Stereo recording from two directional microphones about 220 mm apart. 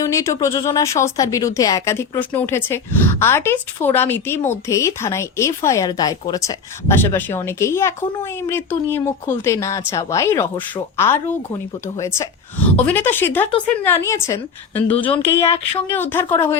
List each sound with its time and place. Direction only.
0.0 s a woman's voice: 15° left (ahead or behind)
14.8 s speech: 25° left (ahead or behind)
15.9 s a woman's voice: 10° left (ahead or behind)